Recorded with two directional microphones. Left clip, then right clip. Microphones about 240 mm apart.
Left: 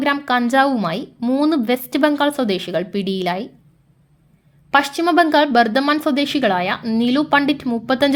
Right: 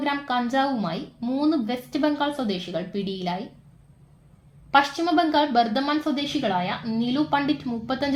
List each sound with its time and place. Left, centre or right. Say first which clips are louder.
0.0 s a woman's voice: left 7 dB; left
4.7 s a woman's voice: left 4 dB; left